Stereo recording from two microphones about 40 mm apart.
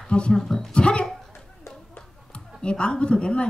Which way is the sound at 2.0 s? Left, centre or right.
Left.